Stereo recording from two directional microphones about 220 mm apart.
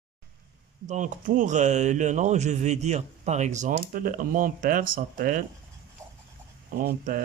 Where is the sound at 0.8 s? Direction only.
35° right (ahead or behind).